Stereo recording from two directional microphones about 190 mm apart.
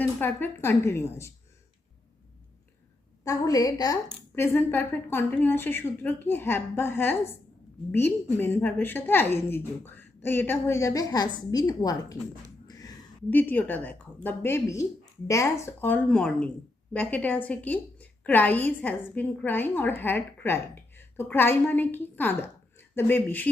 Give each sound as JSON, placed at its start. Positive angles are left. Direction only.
{"t": 0.0, "sound": "a woman's voice", "side_deg": 10}
{"t": 3.2, "sound": "a woman's voice", "side_deg": 20}
{"t": 13.3, "sound": "a woman's voice", "side_deg": 10}